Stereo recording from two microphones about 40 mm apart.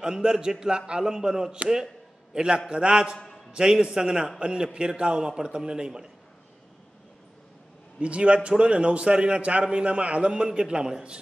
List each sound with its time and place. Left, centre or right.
0.0 s a man's voice: centre
8.0 s a man's voice: right